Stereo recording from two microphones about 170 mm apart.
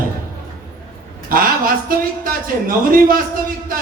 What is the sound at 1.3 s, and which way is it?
Speech, 55° right (ahead or behind).